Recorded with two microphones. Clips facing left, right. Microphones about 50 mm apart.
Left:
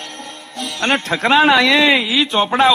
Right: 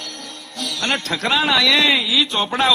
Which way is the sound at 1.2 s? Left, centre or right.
Left.